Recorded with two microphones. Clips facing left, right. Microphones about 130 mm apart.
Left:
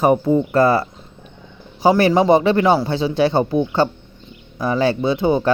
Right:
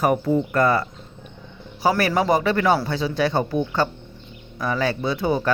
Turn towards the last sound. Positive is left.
turn(degrees=25)  # may be behind; listen again after turning